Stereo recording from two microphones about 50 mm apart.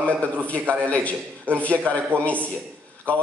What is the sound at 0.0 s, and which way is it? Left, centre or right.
A man's voice, left.